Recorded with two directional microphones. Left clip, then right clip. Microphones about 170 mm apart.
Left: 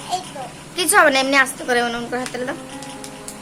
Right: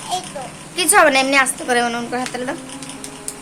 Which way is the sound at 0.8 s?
Centre (ahead or behind).